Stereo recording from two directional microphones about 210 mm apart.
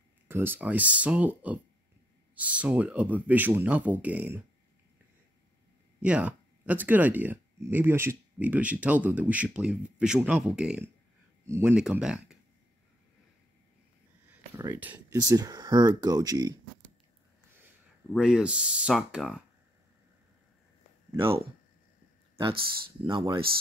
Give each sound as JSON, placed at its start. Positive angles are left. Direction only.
{"t": 0.3, "sound": "speech", "side_deg": -10}
{"t": 5.9, "sound": "speech", "side_deg": -5}
{"t": 14.3, "sound": "speech", "side_deg": -10}
{"t": 18.1, "sound": "speech", "side_deg": -5}
{"t": 21.2, "sound": "speech", "side_deg": -25}